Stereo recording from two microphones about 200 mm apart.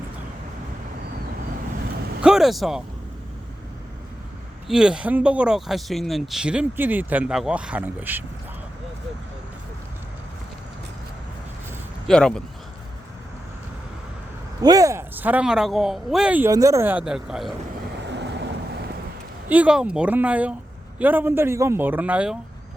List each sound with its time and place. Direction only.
2.2 s speech: centre (ahead or behind)
4.7 s speech: 5° right (ahead or behind)
12.0 s speech: 5° left (ahead or behind)
14.6 s speech: 20° right (ahead or behind); by 17.5 s centre (ahead or behind)
18.1 s vehicle: 60° right (ahead or behind)
19.5 s speech: 5° right (ahead or behind)